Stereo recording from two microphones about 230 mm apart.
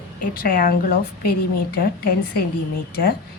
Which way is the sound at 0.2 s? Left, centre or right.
Left.